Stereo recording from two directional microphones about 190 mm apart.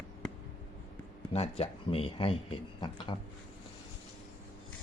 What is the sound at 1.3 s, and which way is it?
Speech, 30° left (ahead or behind).